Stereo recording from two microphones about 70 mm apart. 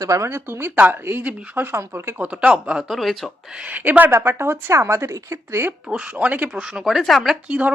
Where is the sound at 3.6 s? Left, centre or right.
Right.